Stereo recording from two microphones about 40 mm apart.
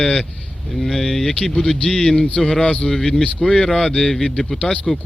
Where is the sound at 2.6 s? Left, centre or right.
Left.